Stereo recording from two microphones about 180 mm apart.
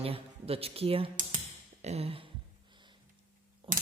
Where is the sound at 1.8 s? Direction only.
35° right (ahead or behind).